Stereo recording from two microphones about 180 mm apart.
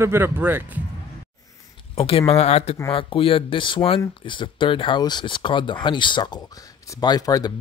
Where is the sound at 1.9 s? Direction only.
30° left (ahead or behind).